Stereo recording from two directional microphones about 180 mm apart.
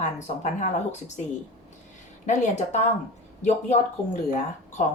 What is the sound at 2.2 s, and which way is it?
Speech, 40° left (ahead or behind).